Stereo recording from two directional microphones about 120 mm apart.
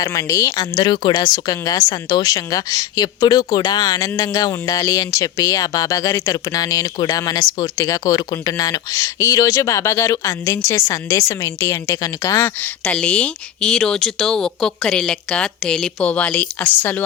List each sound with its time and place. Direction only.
0.0 s speech: 30° left (ahead or behind)
12.6 s speech: 10° left (ahead or behind)